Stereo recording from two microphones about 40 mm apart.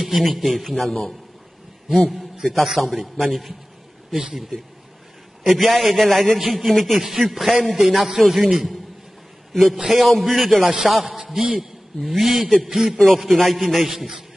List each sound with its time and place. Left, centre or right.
0.0 s a man's voice: centre
4.1 s speech: centre
5.5 s a man's voice: centre
8.2 s a man's voice: centre
10.6 s a man's voice: centre
13.0 s a man's voice: centre